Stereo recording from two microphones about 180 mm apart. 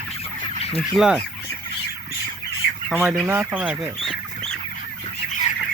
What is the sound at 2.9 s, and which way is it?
Speech, 5° right (ahead or behind).